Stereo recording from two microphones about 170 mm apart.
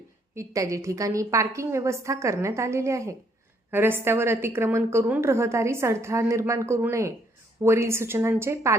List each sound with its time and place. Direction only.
0.3 s a woman's voice: 20° right (ahead or behind)